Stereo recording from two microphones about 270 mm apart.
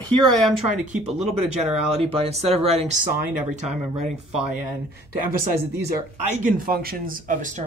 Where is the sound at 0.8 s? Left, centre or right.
Right.